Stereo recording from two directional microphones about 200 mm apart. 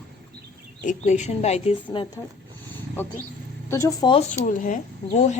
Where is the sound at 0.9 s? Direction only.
35° left (ahead or behind).